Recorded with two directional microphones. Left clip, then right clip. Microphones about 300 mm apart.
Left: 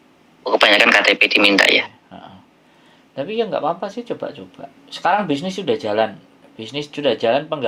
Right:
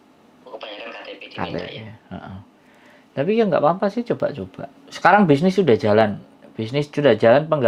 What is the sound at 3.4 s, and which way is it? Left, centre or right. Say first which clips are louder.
Speech: right 2 dB; right.